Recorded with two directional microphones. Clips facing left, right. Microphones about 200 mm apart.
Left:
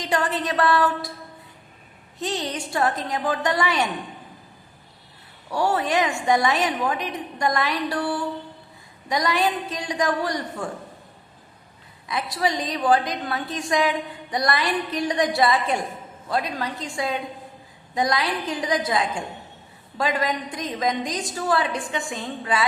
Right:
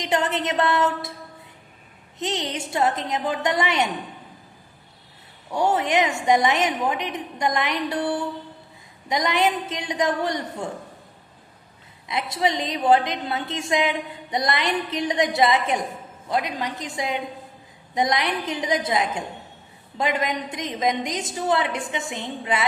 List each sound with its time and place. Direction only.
0.0 s a woman's voice: 20° right (ahead or behind)
2.1 s a woman's voice: 20° right (ahead or behind)
5.5 s a woman's voice: 20° right (ahead or behind)
12.0 s a woman's voice: 25° right (ahead or behind)